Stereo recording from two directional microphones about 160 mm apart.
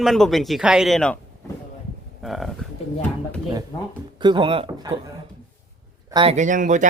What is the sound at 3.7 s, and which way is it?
Speech, 25° left (ahead or behind).